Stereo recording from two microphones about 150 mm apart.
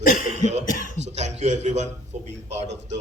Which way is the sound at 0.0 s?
65° left (ahead or behind).